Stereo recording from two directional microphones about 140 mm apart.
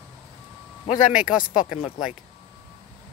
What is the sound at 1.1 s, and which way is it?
Speech, 5° right (ahead or behind).